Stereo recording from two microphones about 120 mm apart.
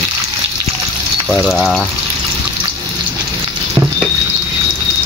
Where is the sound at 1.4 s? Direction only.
Centre (ahead or behind).